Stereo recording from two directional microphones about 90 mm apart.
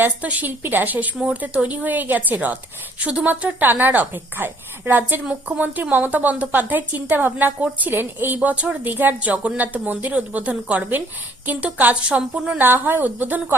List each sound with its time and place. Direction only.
0.0 s a woman's voice: 15° right (ahead or behind)